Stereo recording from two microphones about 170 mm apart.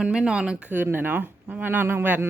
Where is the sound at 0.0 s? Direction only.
5° right (ahead or behind).